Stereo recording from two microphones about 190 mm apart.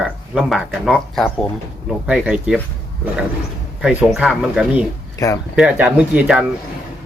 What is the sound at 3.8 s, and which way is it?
Speech, centre (ahead or behind).